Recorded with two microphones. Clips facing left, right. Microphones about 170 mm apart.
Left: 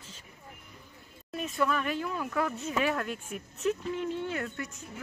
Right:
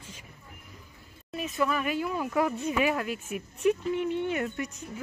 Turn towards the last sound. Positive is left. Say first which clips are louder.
# right 4 dB
turn(degrees=-20)  # may be behind; listen again after turning